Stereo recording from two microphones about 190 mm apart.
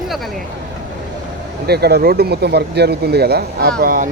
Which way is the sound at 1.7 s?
55° right (ahead or behind).